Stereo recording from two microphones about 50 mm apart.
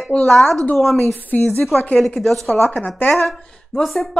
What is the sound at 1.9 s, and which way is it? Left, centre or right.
Speech, centre.